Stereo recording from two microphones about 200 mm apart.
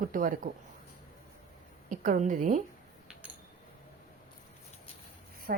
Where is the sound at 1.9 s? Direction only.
40° right (ahead or behind).